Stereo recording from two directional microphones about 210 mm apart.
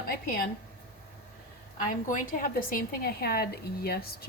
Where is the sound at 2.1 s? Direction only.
40° left (ahead or behind).